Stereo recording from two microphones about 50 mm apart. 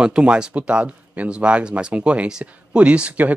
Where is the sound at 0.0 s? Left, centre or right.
Centre.